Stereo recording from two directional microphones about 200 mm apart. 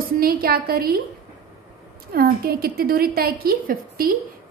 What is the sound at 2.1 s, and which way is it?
A woman's voice, 50° right (ahead or behind).